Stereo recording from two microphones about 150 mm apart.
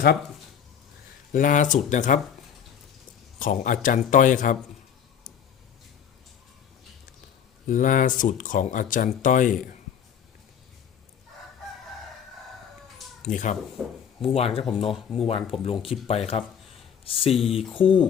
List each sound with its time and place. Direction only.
1.3 s speech: 60° left (ahead or behind)
3.3 s speech: 60° left (ahead or behind)
7.7 s speech: 60° left (ahead or behind)
13.2 s speech: 55° left (ahead or behind)
13.8 s speech: 5° right (ahead or behind)
14.2 s speech: 40° left (ahead or behind)